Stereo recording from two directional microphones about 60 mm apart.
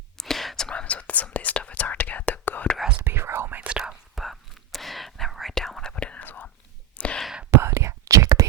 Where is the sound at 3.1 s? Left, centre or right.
Right.